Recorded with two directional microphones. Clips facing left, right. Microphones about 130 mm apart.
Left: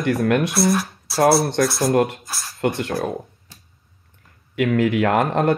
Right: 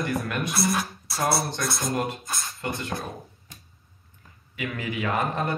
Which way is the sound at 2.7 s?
65° left (ahead or behind).